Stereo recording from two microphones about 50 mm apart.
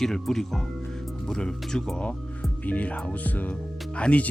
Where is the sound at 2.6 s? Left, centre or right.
Left.